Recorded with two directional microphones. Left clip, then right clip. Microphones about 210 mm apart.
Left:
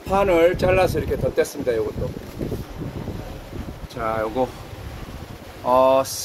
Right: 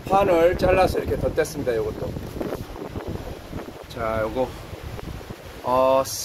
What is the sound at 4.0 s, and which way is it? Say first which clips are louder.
Speech: left 1 dB; 20° left (ahead or behind).